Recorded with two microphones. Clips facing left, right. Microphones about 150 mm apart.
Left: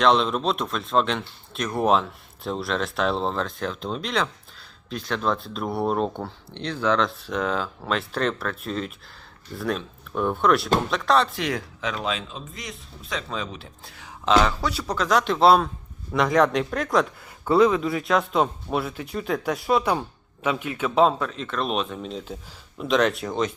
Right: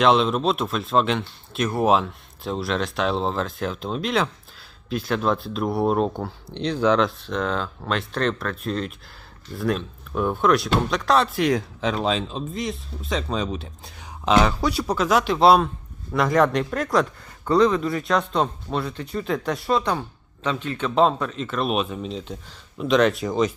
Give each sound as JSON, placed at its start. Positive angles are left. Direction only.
{"t": 0.0, "sound": "speech", "side_deg": -5}
{"t": 6.5, "sound": "speech", "side_deg": -15}
{"t": 7.3, "sound": "speech", "side_deg": 5}
{"t": 11.4, "sound": "speech", "side_deg": -25}